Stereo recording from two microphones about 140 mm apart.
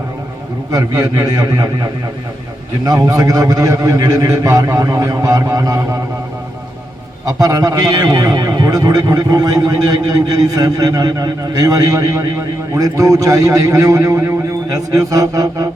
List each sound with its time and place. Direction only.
0.7 s a man's voice: 25° right (ahead or behind)
7.3 s a man's voice: 25° right (ahead or behind)